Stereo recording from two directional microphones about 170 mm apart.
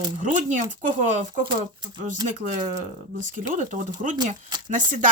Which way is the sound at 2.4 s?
45° right (ahead or behind).